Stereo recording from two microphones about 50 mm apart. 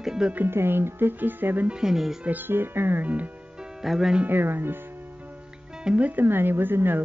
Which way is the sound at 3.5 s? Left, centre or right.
Centre.